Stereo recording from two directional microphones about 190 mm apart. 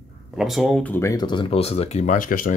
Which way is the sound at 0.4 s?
Centre (ahead or behind).